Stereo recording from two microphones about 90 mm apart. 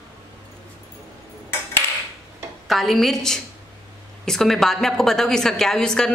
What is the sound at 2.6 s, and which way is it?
Speech, centre (ahead or behind).